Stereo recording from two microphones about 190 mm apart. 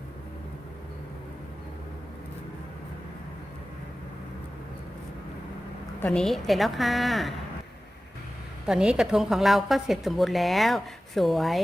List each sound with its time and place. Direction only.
6.0 s a woman's voice: 5° left (ahead or behind)
8.6 s a woman's voice: 5° right (ahead or behind)